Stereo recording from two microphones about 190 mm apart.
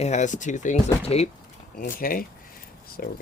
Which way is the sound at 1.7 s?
45° left (ahead or behind).